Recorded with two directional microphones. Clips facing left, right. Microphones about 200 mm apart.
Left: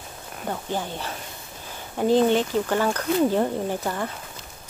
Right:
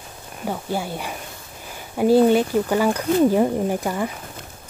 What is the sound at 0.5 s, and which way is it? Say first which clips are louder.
Speech: right 3 dB; 10° right (ahead or behind).